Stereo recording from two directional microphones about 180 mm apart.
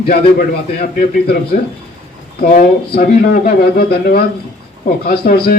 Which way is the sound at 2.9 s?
55° left (ahead or behind).